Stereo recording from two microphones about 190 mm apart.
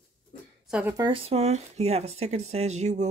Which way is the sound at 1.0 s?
25° right (ahead or behind).